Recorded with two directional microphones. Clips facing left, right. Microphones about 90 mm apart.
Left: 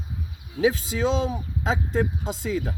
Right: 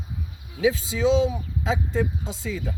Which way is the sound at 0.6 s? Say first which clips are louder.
Even; 40° left (ahead or behind).